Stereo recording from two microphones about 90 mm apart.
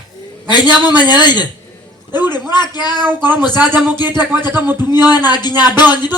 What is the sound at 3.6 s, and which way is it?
Speech, 20° right (ahead or behind).